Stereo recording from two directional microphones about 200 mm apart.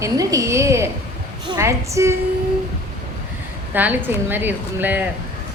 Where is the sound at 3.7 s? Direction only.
10° right (ahead or behind).